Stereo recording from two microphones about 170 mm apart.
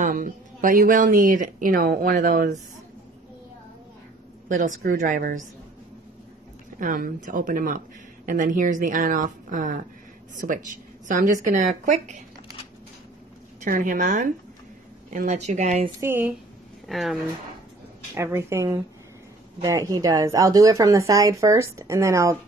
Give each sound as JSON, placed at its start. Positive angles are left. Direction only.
{"t": 0.0, "sound": "speech", "side_deg": -55}
{"t": 4.5, "sound": "speech", "side_deg": -50}
{"t": 6.8, "sound": "speech", "side_deg": -55}
{"t": 13.7, "sound": "speech", "side_deg": -55}
{"t": 16.0, "sound": "a woman's voice", "side_deg": -10}
{"t": 16.8, "sound": "speech", "side_deg": 0}
{"t": 18.1, "sound": "a woman's voice", "side_deg": -15}